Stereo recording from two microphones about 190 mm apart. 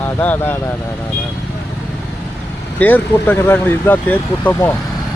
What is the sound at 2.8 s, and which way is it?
Speech, 10° left (ahead or behind).